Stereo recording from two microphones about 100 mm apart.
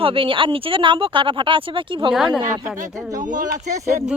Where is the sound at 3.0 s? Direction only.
35° right (ahead or behind).